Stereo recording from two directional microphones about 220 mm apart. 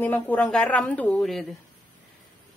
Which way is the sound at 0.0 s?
5° left (ahead or behind).